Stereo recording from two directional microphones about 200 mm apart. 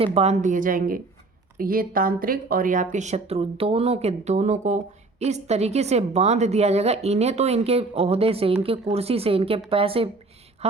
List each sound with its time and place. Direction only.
0.0 s a woman's voice: 30° right (ahead or behind)